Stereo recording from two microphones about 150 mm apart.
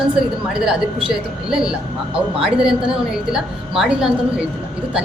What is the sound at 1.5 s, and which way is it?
A woman's voice, 5° right (ahead or behind).